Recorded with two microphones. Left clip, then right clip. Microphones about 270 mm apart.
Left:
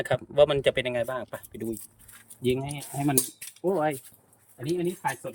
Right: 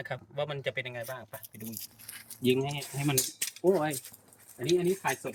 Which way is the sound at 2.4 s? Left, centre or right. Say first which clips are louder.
Even; centre.